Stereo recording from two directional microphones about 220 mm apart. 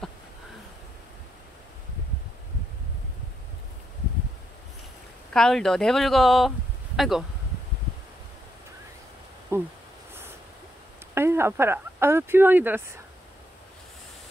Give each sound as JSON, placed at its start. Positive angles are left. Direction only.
{"t": 5.3, "sound": "speech", "side_deg": 0}
{"t": 9.5, "sound": "speech", "side_deg": -10}
{"t": 11.1, "sound": "speech", "side_deg": -10}